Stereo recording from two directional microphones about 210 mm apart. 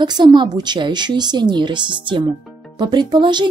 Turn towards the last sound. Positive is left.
turn(degrees=-20)  # may be behind; listen again after turning